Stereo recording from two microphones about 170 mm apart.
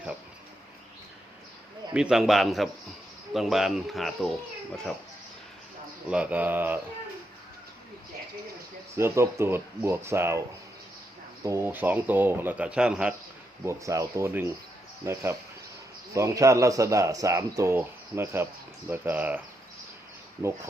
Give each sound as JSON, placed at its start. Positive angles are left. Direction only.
{"t": 1.9, "sound": "speech", "side_deg": -5}
{"t": 6.1, "sound": "speech", "side_deg": -10}
{"t": 9.0, "sound": "speech", "side_deg": -15}
{"t": 11.4, "sound": "speech", "side_deg": -15}
{"t": 13.7, "sound": "speech", "side_deg": -20}